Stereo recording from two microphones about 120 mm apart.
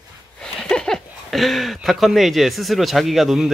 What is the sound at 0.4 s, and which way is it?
Speech, 5° left (ahead or behind).